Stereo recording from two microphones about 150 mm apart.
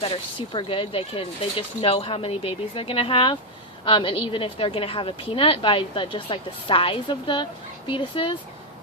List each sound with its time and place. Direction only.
0.0 s a woman's voice: 35° left (ahead or behind)